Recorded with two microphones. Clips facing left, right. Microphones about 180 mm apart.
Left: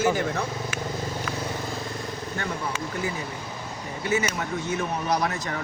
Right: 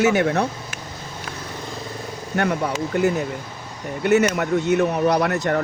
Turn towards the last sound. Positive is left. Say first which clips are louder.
# right 7 dB
turn(degrees=-65)  # may be behind; listen again after turning